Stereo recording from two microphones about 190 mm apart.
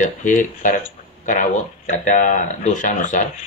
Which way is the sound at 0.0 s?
40° left (ahead or behind).